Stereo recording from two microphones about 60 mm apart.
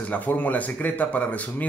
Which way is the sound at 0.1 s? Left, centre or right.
Left.